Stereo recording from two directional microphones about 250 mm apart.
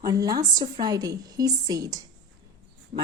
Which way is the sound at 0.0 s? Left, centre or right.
Centre.